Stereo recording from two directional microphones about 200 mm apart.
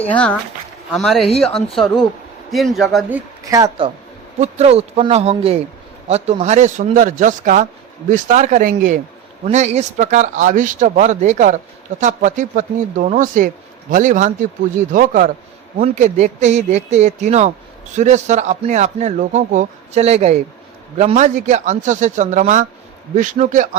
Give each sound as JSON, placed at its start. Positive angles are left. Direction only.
{"t": 0.1, "sound": "a man's voice", "side_deg": 5}
{"t": 3.5, "sound": "speech", "side_deg": -20}
{"t": 4.4, "sound": "speech", "side_deg": -30}